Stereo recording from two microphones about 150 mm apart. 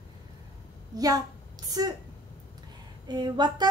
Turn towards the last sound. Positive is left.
turn(degrees=-30)  # may be behind; listen again after turning